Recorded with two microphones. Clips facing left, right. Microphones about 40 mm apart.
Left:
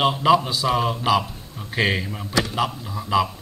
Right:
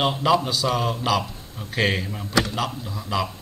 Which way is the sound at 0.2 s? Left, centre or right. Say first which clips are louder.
Left 2 dB; centre.